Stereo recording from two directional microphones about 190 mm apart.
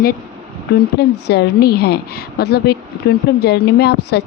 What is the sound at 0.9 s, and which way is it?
A woman's voice, 60° left (ahead or behind).